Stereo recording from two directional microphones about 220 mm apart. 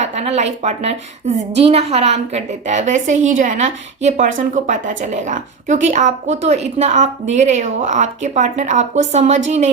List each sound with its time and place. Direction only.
0.0 s a woman's voice: 30° right (ahead or behind)